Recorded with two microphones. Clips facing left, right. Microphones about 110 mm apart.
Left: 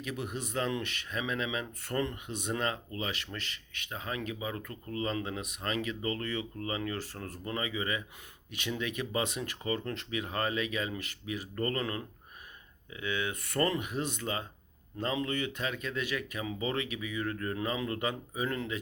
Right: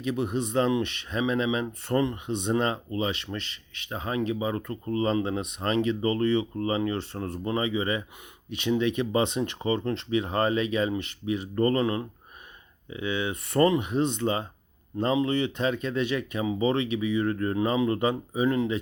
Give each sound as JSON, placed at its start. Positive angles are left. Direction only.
{"t": 0.0, "sound": "speech", "side_deg": -20}